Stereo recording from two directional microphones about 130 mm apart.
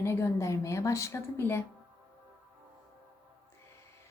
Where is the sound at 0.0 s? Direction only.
20° left (ahead or behind).